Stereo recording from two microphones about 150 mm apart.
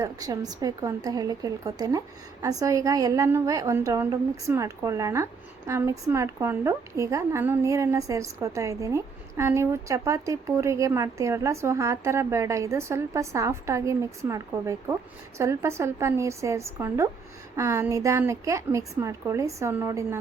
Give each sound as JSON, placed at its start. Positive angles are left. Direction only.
{"t": 0.0, "sound": "a woman's voice", "side_deg": -25}